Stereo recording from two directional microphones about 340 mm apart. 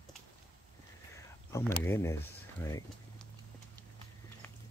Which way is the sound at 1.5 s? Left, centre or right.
Centre.